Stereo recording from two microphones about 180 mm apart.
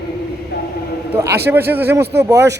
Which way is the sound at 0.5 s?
70° left (ahead or behind).